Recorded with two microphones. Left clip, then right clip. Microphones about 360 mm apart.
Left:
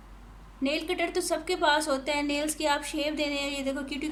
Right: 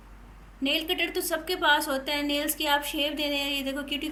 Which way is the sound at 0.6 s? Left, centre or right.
Centre.